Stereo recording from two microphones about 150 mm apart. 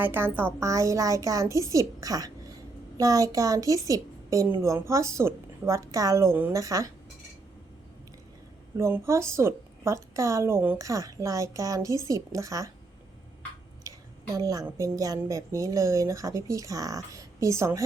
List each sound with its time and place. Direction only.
0.0 s a woman's voice: 15° right (ahead or behind)
8.8 s a woman's voice: 20° right (ahead or behind)
14.3 s a woman's voice: 25° right (ahead or behind)